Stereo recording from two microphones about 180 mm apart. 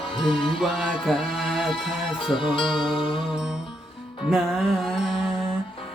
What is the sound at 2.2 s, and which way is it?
Music, 30° left (ahead or behind).